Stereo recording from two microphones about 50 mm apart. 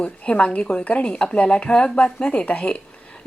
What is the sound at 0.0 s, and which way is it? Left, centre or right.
Speech, left.